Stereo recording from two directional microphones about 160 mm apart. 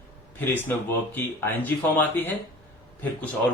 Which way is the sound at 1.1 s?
10° left (ahead or behind).